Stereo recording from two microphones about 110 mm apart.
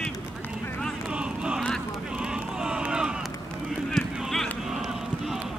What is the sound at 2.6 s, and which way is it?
Run, 10° right (ahead or behind).